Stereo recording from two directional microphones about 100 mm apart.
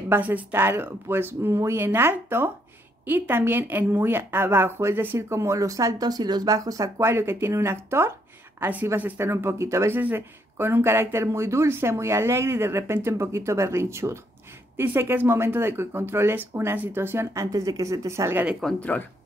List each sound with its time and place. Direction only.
0.1 s a woman's voice: 15° right (ahead or behind)
18.8 s speech: 15° left (ahead or behind)